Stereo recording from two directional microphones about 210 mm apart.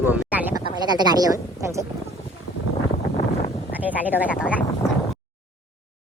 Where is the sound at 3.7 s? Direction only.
10° right (ahead or behind).